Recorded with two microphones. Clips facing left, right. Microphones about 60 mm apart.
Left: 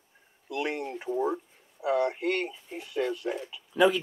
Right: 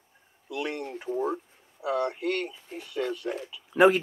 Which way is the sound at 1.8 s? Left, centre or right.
Centre.